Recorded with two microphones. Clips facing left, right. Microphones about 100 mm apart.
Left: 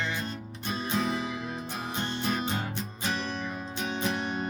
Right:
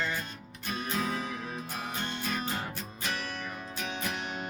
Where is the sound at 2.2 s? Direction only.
20° left (ahead or behind).